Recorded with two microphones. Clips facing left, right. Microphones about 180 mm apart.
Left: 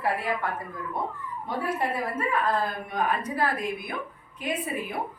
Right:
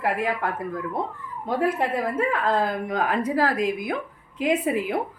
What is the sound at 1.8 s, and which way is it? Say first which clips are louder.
A woman's voice: right 4 dB; 90° right.